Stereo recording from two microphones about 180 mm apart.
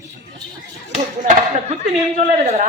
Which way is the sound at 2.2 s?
40° right (ahead or behind).